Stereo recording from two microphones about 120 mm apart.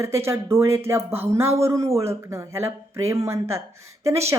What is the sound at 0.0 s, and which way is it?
Speech, 25° right (ahead or behind).